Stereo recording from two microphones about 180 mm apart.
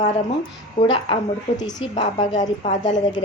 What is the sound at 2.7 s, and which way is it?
Speech, 25° left (ahead or behind).